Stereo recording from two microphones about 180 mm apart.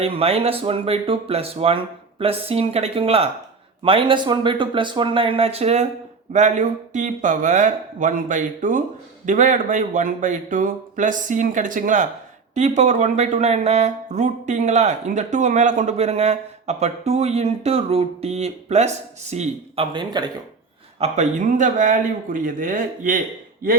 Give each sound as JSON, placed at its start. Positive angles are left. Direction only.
{"t": 0.0, "sound": "speech", "side_deg": -35}
{"t": 21.0, "sound": "speech", "side_deg": -40}